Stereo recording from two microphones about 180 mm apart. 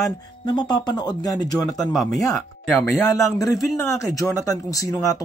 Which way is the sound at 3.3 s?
20° left (ahead or behind).